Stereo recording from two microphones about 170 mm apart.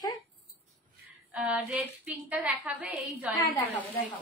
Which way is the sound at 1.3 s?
5° right (ahead or behind).